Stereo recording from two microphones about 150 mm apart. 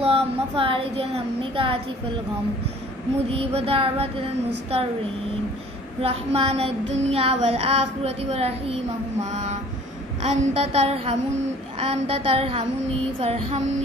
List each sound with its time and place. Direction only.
0.0 s child singing: 40° right (ahead or behind)
3.3 s child singing: 40° right (ahead or behind)
5.9 s child singing: 40° right (ahead or behind)